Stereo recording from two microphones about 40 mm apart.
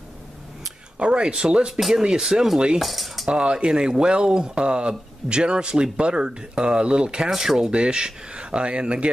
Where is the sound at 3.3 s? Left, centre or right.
Right.